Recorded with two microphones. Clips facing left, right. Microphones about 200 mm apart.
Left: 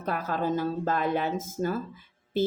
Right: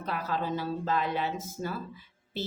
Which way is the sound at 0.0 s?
50° left (ahead or behind).